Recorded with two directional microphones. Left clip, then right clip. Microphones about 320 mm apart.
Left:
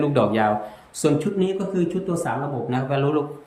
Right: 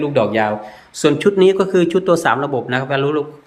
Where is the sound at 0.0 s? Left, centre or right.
Centre.